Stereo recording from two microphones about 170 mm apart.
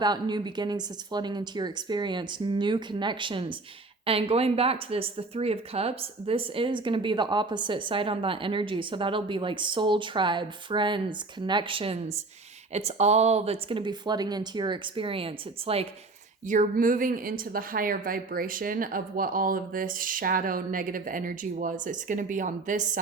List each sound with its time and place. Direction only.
0.0 s a woman's voice: 25° right (ahead or behind)
16.5 s a woman's voice: 50° right (ahead or behind)